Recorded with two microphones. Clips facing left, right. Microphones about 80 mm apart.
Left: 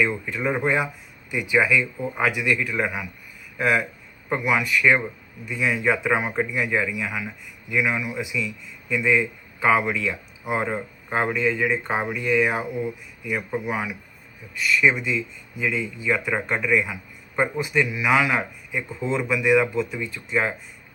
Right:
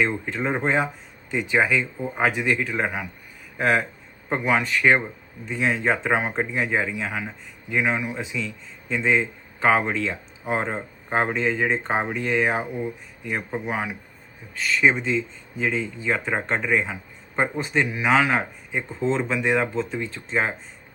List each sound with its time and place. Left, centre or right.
0.0 s speech: right
4.3 s speech: right